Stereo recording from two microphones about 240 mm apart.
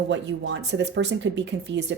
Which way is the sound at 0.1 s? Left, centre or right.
Right.